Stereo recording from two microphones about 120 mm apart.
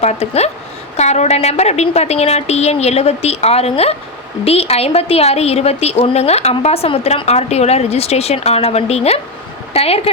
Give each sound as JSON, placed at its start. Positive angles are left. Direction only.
{"t": 0.0, "sound": "a woman's voice", "side_deg": 60}